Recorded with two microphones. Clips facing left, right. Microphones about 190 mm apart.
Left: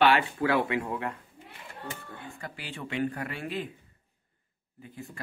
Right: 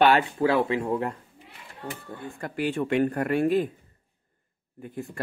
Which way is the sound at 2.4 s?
50° right (ahead or behind).